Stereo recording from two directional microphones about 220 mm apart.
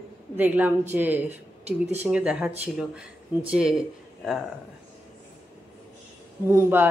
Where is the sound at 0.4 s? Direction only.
10° right (ahead or behind).